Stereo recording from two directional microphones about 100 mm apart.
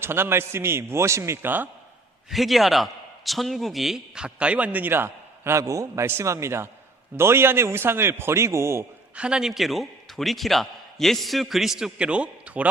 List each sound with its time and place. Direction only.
0.0 s a man's voice: 25° right (ahead or behind)
2.3 s a man's voice: centre (ahead or behind); by 8.8 s 25° right (ahead or behind)
9.1 s a man's voice: 10° right (ahead or behind)